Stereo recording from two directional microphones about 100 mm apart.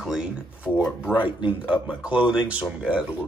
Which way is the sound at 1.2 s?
55° left (ahead or behind).